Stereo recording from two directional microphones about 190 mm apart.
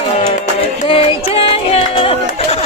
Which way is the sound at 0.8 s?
30° left (ahead or behind).